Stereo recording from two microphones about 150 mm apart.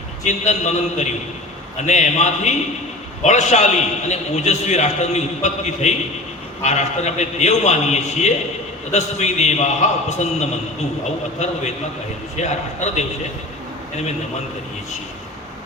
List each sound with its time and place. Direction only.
0.3 s a man's voice: 50° left (ahead or behind)
12.4 s a man's voice: 50° left (ahead or behind)